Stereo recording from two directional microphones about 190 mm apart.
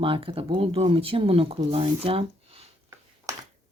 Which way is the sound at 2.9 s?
20° right (ahead or behind).